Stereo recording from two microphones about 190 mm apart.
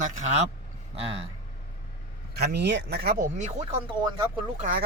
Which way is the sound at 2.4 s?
60° right (ahead or behind).